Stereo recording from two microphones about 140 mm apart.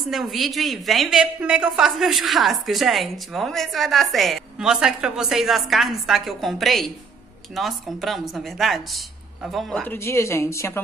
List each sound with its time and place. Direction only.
0.1 s a woman's voice: centre (ahead or behind)
9.8 s a woman's voice: 20° left (ahead or behind)